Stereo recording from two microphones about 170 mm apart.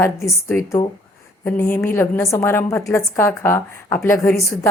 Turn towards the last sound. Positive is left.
turn(degrees=15)  # may be behind; listen again after turning